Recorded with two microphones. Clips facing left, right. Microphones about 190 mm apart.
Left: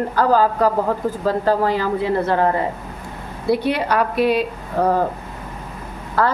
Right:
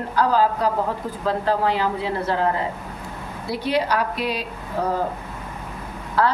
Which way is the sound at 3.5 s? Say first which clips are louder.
Left 4 dB; 55° left (ahead or behind).